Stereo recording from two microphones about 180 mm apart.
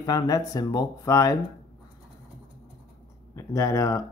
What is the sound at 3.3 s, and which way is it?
Speech, 15° left (ahead or behind).